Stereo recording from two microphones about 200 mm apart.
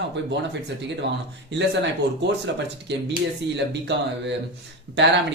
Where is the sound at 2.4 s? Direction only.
60° right (ahead or behind).